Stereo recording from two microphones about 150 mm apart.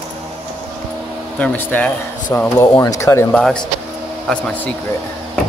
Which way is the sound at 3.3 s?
5° left (ahead or behind).